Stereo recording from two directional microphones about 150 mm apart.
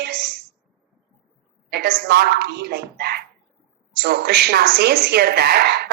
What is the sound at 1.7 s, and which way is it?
A woman's voice, 90° right.